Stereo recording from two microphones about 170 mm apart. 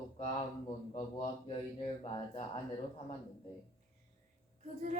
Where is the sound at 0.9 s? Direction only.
30° left (ahead or behind).